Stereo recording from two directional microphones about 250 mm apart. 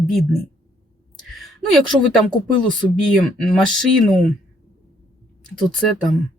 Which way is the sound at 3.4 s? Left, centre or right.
Centre.